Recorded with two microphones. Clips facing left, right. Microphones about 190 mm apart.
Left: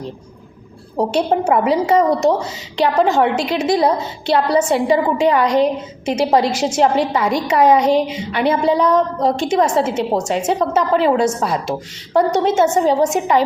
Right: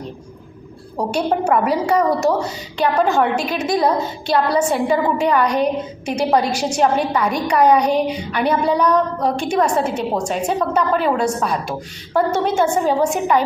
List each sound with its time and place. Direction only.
0.9 s a woman's voice: 25° left (ahead or behind)